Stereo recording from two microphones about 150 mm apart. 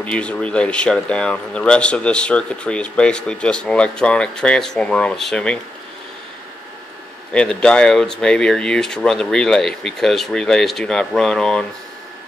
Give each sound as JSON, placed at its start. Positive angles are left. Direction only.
{"t": 0.0, "sound": "speech", "side_deg": 10}
{"t": 7.3, "sound": "speech", "side_deg": 5}